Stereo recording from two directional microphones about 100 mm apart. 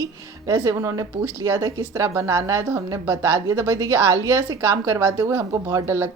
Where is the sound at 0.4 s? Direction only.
30° right (ahead or behind).